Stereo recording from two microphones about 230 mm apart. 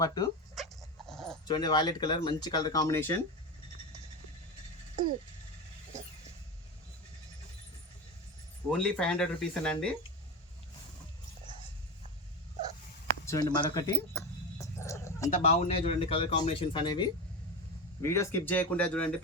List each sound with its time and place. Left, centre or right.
0.0 s speech: centre
0.5 s dog: centre
1.5 s speech: centre
8.8 s speech: centre
13.2 s dog: centre
15.3 s speech: left; by 19.1 s centre